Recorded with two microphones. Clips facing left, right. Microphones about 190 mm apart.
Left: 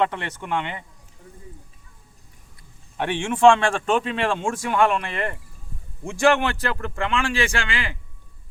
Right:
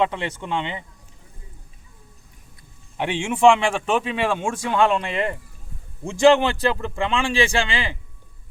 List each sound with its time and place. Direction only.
0.0 s speech: 15° right (ahead or behind)
3.0 s speech: 10° right (ahead or behind)